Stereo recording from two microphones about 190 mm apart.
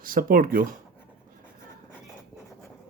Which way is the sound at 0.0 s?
50° right (ahead or behind).